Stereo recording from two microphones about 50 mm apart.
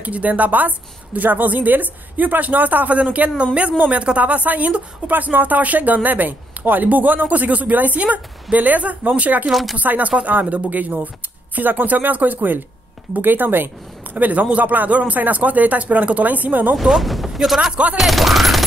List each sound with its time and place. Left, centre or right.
0.0 s a woman's voice: right
5.1 s a woman's voice: right
9.5 s speech: centre
9.8 s a woman's voice: right
16.7 s speech: centre
17.9 s fusillade: centre